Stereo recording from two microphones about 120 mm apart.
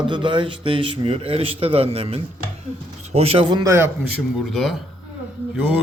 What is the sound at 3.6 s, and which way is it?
Speech, 20° right (ahead or behind).